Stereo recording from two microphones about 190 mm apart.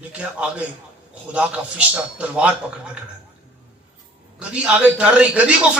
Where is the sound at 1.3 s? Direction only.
5° right (ahead or behind).